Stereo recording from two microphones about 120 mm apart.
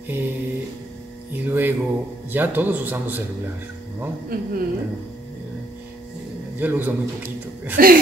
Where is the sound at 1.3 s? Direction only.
15° right (ahead or behind).